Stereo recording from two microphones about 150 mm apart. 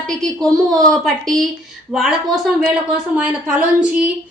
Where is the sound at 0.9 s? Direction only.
5° left (ahead or behind).